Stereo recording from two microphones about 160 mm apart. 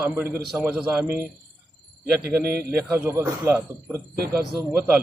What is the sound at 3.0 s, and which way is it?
Speech, 15° right (ahead or behind).